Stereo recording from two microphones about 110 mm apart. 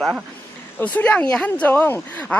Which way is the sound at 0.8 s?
15° left (ahead or behind).